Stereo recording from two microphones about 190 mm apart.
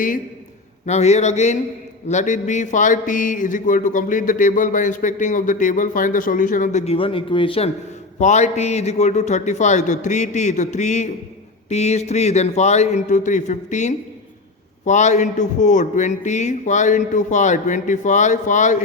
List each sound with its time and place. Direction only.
0.9 s a man's voice: 35° left (ahead or behind)